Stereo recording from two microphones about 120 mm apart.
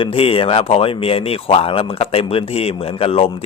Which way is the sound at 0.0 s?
50° left (ahead or behind).